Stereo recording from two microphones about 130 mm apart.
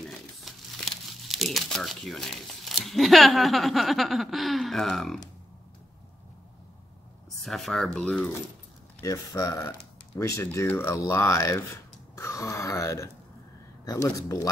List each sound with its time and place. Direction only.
0.5 s crumpling: centre (ahead or behind)
1.3 s speech: centre (ahead or behind)
7.2 s speech: centre (ahead or behind)
9.0 s speech: 30° left (ahead or behind)